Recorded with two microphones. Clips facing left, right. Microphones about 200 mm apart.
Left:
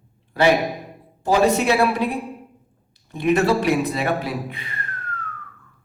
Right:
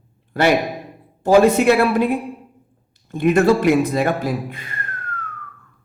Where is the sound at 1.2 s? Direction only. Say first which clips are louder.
Right 5 dB; 50° right (ahead or behind).